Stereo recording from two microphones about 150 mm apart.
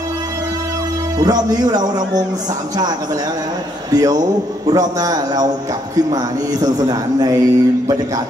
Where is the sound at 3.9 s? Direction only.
25° right (ahead or behind).